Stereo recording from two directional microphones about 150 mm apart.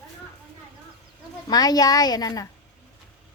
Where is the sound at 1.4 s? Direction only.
25° left (ahead or behind).